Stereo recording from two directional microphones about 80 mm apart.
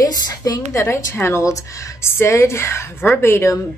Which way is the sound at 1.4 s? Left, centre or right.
Left.